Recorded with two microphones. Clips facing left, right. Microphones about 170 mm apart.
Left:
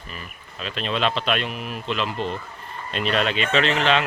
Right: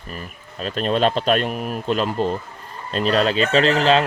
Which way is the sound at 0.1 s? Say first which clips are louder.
Right 6 dB; 40° right (ahead or behind).